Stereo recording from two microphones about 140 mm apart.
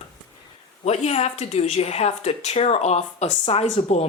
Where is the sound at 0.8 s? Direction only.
50° left (ahead or behind).